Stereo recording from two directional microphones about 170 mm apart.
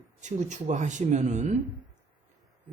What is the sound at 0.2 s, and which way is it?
Speech, 45° right (ahead or behind).